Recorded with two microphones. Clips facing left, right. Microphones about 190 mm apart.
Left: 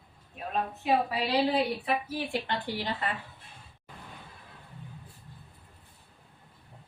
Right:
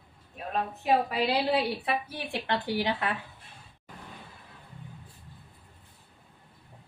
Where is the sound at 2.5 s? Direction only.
70° right (ahead or behind).